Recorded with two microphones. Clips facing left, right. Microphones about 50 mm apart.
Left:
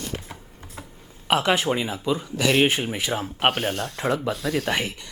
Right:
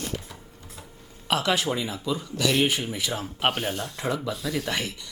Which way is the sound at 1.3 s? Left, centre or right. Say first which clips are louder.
Left 4 dB; left.